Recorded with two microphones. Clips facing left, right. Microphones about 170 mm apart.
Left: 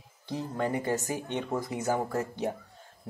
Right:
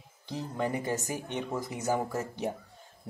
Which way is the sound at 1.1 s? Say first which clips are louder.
Left 2 dB; 20° left (ahead or behind).